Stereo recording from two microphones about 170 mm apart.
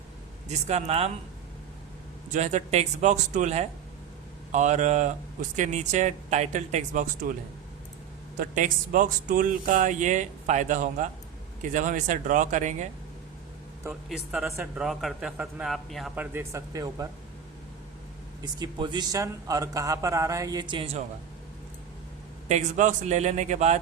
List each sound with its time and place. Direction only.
0.4 s speech: 40° right (ahead or behind)
2.3 s speech: 45° right (ahead or behind)
8.4 s speech: 50° right (ahead or behind)
14.1 s a man's voice: 5° right (ahead or behind)
16.1 s speech: 10° right (ahead or behind)
18.4 s speech: 25° right (ahead or behind)
22.4 s speech: 45° right (ahead or behind)